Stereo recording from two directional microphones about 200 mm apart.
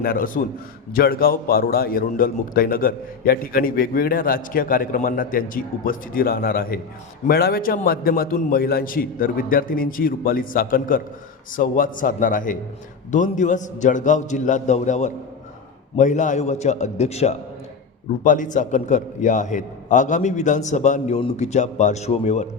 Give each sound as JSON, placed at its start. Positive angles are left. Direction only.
{"t": 0.0, "sound": "a man's voice", "side_deg": 45}